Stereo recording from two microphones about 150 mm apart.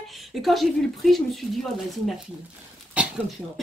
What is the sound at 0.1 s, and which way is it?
Speech, centre (ahead or behind).